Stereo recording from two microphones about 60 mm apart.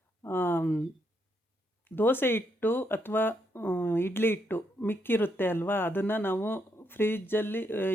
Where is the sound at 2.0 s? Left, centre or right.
Left.